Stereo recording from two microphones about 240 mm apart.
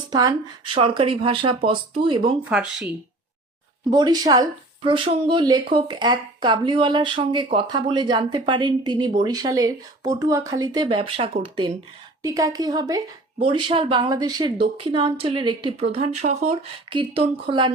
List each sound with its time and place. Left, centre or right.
0.1 s speech: centre
2.4 s speech: centre
3.8 s speech: centre